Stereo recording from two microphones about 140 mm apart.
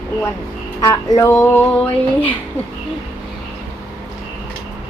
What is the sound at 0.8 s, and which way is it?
Music, 25° left (ahead or behind).